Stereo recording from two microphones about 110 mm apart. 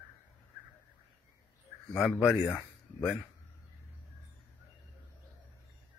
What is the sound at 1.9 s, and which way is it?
Speech, 15° left (ahead or behind).